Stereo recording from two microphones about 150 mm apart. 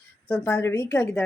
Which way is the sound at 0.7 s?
20° left (ahead or behind).